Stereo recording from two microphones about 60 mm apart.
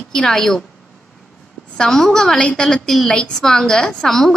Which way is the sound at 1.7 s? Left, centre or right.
Centre.